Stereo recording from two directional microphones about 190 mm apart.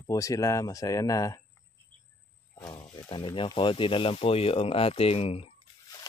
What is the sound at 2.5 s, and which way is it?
Speech, 20° left (ahead or behind).